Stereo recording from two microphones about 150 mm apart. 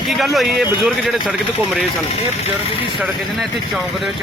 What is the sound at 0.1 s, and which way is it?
Speech, centre (ahead or behind).